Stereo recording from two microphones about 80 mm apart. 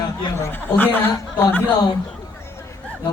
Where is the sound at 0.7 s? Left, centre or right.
Left.